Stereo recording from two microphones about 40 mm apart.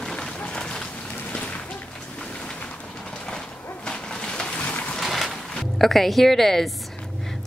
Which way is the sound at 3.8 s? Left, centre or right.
Centre.